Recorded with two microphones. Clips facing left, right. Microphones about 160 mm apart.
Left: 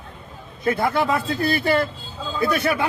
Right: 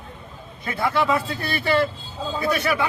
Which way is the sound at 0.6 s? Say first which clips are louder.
Left 2 dB; 40° left (ahead or behind).